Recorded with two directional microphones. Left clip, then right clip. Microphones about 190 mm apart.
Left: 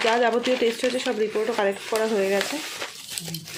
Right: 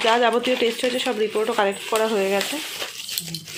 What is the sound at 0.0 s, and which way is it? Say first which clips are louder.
Speech: right 2 dB; centre (ahead or behind).